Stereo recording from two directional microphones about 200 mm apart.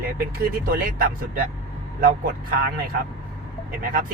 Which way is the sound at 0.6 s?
45° right (ahead or behind).